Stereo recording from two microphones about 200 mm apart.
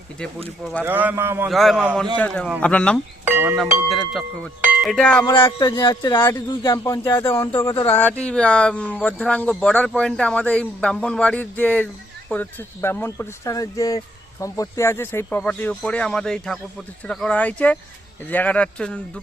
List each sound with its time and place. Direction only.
0.9 s speech: 10° right (ahead or behind)
1.5 s speech: centre (ahead or behind)
3.2 s speech: 10° right (ahead or behind)
5.2 s speech: 20° left (ahead or behind); by 19.2 s 5° left (ahead or behind)